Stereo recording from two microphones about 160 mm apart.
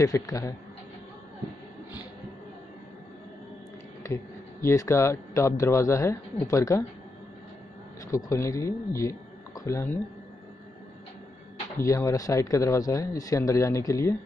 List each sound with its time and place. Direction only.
0.0 s speech: 20° left (ahead or behind)
4.0 s speech: 15° left (ahead or behind)
8.1 s speech: 20° left (ahead or behind)
11.8 s speech: 20° left (ahead or behind)